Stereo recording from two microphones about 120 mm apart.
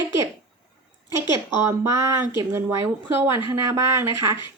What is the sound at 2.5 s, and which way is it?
Speech, 25° right (ahead or behind).